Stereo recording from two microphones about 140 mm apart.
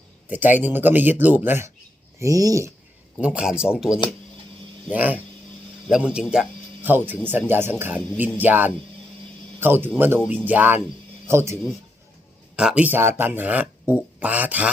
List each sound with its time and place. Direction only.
0.3 s speech: 15° right (ahead or behind)
3.2 s a man's voice: 5° right (ahead or behind)
12.5 s speech: 10° right (ahead or behind)